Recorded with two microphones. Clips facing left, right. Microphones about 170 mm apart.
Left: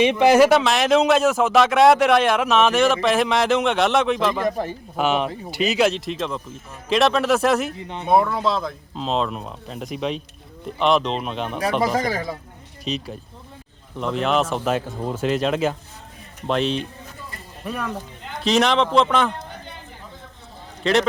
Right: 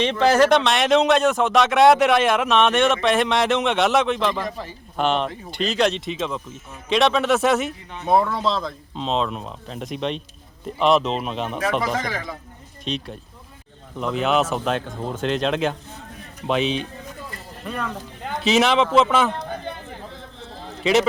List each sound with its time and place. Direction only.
0.0 s speech: 15° left (ahead or behind)
4.4 s speech: 50° left (ahead or behind)
4.9 s speech: 5° left (ahead or behind)
11.8 s speech: 40° left (ahead or behind)
12.8 s speech: centre (ahead or behind)
18.4 s speech: 5° right (ahead or behind)
20.8 s speech: 5° right (ahead or behind)